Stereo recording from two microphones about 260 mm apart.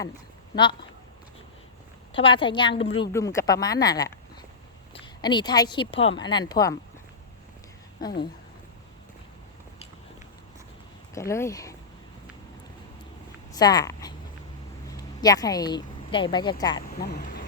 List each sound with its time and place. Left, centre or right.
0.5 s a woman's voice: centre
2.1 s a woman's voice: centre
11.1 s speech: centre
13.5 s speech: centre
17.0 s speech: left